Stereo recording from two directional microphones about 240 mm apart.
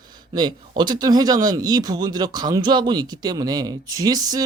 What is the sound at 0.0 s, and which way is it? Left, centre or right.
Speech, centre.